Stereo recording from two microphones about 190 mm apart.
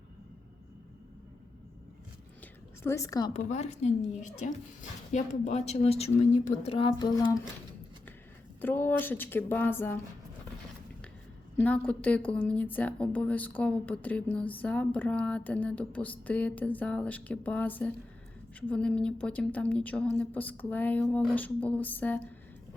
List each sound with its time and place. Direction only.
2.8 s a woman's voice: 15° left (ahead or behind)
3.3 s a woman's voice: 35° left (ahead or behind); by 7.3 s 20° left (ahead or behind)
8.6 s a woman's voice: 10° left (ahead or behind)
11.6 s a woman's voice: 5° left (ahead or behind)